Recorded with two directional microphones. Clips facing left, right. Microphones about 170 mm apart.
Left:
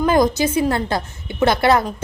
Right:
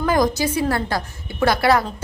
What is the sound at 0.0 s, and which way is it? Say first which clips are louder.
A woman's voice: left 3 dB; 25° left (ahead or behind).